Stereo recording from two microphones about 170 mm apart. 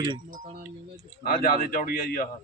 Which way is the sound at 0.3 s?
50° right (ahead or behind).